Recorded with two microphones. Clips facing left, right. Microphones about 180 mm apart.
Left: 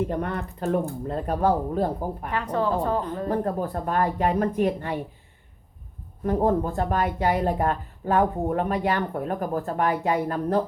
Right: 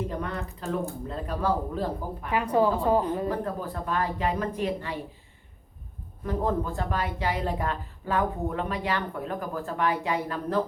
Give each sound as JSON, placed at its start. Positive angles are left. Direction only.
{"t": 0.0, "sound": "a woman's voice", "side_deg": 55}
{"t": 2.3, "sound": "speech", "side_deg": -10}
{"t": 3.2, "sound": "a woman's voice", "side_deg": 45}
{"t": 6.2, "sound": "a woman's voice", "side_deg": 45}